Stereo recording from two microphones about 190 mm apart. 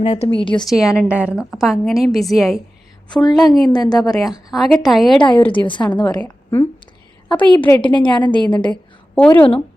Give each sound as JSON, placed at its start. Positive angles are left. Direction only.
{"t": 0.0, "sound": "a woman's voice", "side_deg": 30}
{"t": 0.7, "sound": "a woman's voice", "side_deg": 0}
{"t": 3.2, "sound": "a woman's voice", "side_deg": 20}
{"t": 4.5, "sound": "a woman's voice", "side_deg": 0}
{"t": 5.2, "sound": "a woman's voice", "side_deg": 25}
{"t": 8.7, "sound": "a woman's voice", "side_deg": 5}